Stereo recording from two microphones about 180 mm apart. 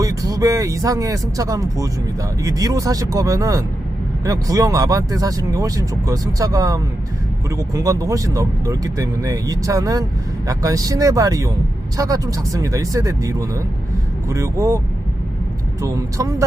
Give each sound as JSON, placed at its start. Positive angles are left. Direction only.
{"t": 0.0, "sound": "speech", "side_deg": -20}
{"t": 15.8, "sound": "speech", "side_deg": -15}